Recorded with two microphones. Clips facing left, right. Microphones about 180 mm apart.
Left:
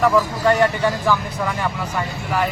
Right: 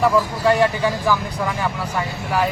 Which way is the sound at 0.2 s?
10° right (ahead or behind).